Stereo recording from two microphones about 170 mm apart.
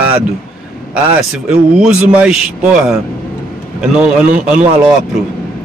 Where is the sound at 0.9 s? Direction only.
5° right (ahead or behind).